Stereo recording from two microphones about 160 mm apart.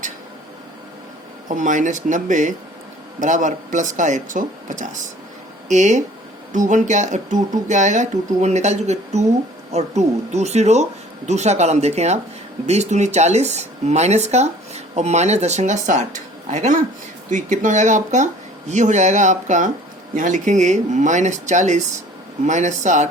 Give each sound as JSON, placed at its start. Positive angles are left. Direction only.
{"t": 1.5, "sound": "speech", "side_deg": -50}